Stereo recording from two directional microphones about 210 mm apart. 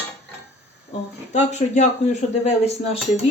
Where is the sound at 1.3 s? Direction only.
35° left (ahead or behind).